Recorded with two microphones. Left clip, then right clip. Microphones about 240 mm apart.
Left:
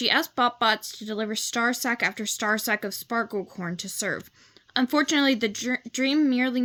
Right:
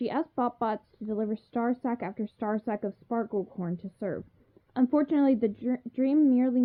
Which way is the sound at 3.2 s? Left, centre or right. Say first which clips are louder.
Left 1 dB; left.